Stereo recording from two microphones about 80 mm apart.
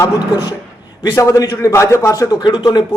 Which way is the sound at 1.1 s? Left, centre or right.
Left.